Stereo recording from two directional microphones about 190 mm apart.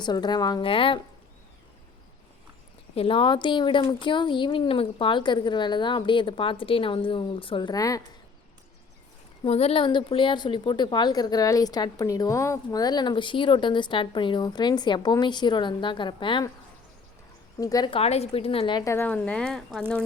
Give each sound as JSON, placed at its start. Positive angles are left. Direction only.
{"t": 0.0, "sound": "a woman's voice", "side_deg": 20}
{"t": 2.9, "sound": "a woman's voice", "side_deg": 30}
{"t": 9.4, "sound": "a woman's voice", "side_deg": 30}
{"t": 17.6, "sound": "a woman's voice", "side_deg": 20}
{"t": 18.9, "sound": "speech", "side_deg": 10}